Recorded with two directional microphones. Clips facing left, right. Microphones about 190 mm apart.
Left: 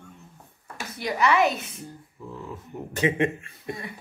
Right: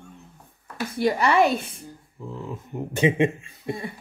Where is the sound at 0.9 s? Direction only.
30° right (ahead or behind).